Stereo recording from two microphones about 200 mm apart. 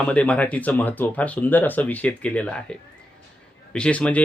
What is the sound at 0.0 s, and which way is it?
Speech, 5° left (ahead or behind).